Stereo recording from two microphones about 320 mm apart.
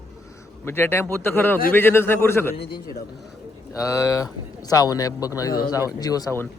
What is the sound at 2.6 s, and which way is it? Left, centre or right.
Speech, left.